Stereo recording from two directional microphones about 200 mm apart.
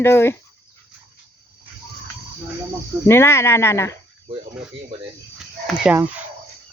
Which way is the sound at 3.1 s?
15° left (ahead or behind).